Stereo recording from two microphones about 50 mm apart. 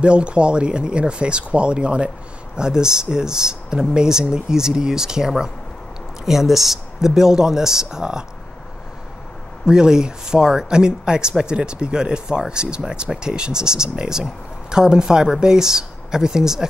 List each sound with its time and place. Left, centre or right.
0.0 s speech: right
9.7 s speech: centre